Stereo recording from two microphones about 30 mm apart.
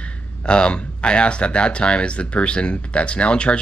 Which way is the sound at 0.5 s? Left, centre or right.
Left.